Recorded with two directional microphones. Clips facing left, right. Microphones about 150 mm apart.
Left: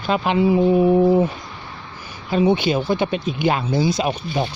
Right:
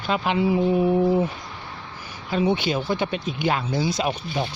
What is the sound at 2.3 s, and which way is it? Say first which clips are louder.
Speech: left 5 dB; 20° left (ahead or behind).